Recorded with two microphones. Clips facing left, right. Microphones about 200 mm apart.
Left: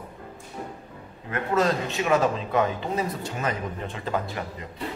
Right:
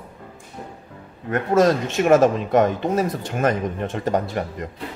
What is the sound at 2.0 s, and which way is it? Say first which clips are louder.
Speech: right 8 dB; 50° right (ahead or behind).